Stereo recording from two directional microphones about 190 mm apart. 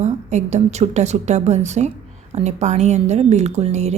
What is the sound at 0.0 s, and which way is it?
A woman's voice, 35° right (ahead or behind).